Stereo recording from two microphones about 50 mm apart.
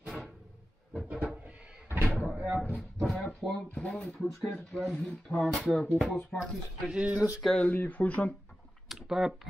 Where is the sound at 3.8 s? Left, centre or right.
Left.